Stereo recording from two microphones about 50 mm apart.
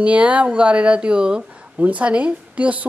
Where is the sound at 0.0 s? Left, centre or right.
Right.